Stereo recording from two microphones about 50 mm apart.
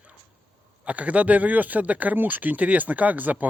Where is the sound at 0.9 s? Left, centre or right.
Right.